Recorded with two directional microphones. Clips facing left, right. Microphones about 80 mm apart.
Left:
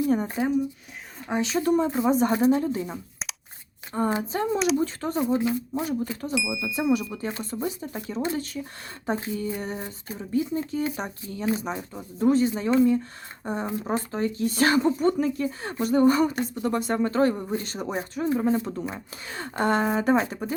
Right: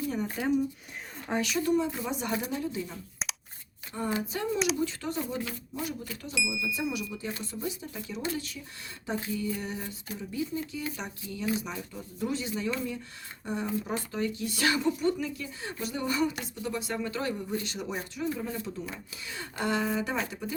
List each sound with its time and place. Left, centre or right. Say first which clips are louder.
0.4 s speech: left 3 dB; left
1.6 s speech: left 6 dB; left
4.1 s speech: left 5 dB; left
5.4 s speech: left 11 dB; left
5.8 s speech: left 8 dB; left